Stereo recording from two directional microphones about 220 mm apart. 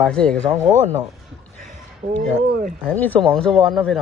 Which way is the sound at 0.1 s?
5° left (ahead or behind).